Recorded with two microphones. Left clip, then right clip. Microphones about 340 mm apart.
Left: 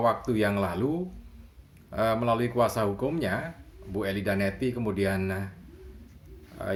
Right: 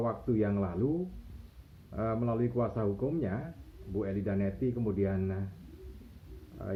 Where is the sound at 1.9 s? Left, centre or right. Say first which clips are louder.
Left 8 dB; left.